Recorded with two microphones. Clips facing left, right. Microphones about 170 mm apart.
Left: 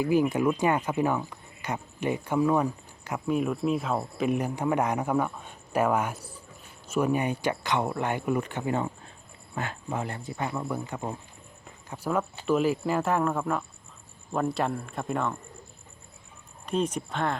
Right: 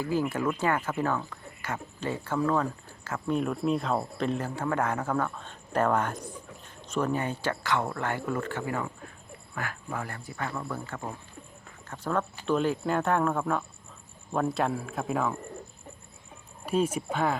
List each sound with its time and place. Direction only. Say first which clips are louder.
0.0 s speech: left 4 dB; 15° left (ahead or behind)
3.3 s speech: left 1 dB; 5° left (ahead or behind)
4.3 s speech: left 5 dB; 15° left (ahead or behind); by 15.4 s 5° right (ahead or behind)
16.6 s speech: right 1 dB; 5° right (ahead or behind)